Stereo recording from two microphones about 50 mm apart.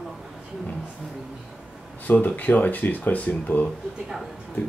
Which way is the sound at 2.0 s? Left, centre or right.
Left.